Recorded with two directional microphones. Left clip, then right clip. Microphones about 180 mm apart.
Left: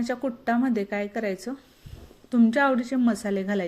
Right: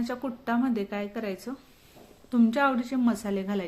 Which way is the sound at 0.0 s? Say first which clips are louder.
Left 5 dB; 20° left (ahead or behind).